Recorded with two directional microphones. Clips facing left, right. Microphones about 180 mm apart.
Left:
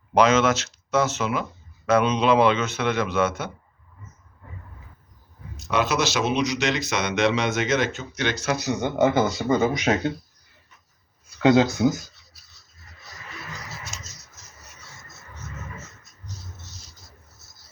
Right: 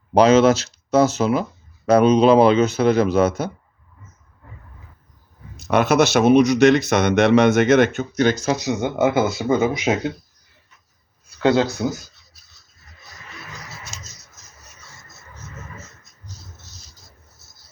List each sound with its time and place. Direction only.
0.1 s speech: 35° right (ahead or behind)
5.5 s speech: 60° right (ahead or behind); by 8.5 s 40° right (ahead or behind)
8.6 s speech: 10° right (ahead or behind)